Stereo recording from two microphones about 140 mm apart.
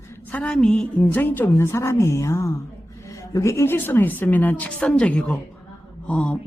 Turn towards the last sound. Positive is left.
turn(degrees=10)  # may be behind; listen again after turning